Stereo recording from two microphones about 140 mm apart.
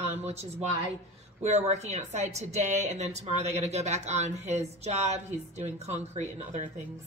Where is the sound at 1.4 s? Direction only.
55° right (ahead or behind).